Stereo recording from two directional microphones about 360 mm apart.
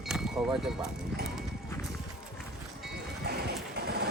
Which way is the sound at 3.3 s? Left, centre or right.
Right.